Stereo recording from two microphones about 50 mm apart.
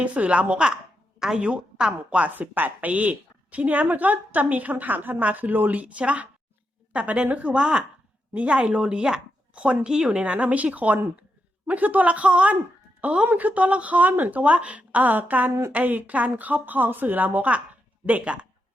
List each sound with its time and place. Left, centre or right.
0.0 s a woman's voice: right
2.3 s a woman's voice: right
7.6 s a woman's voice: centre